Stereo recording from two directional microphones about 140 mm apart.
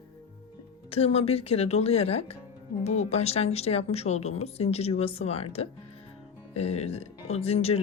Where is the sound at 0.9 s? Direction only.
45° left (ahead or behind).